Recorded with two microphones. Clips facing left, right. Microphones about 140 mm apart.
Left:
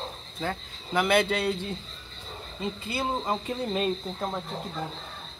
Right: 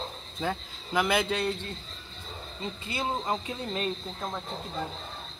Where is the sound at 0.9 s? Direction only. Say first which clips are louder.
Left 3 dB; centre (ahead or behind).